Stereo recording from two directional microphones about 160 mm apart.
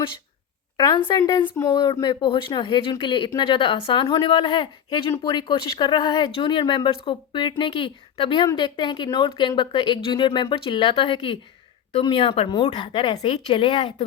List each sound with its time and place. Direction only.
0.8 s speech: 25° left (ahead or behind)